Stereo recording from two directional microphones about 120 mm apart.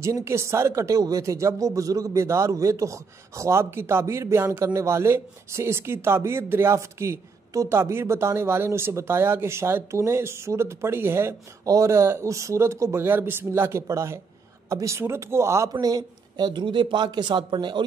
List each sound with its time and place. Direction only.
0.0 s speech: 25° right (ahead or behind)
15.7 s speech: 35° right (ahead or behind)